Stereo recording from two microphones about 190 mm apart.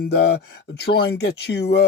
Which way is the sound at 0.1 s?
60° left (ahead or behind).